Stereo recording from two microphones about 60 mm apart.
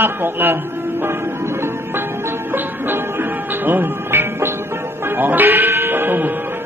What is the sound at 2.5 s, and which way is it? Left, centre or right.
Music, right.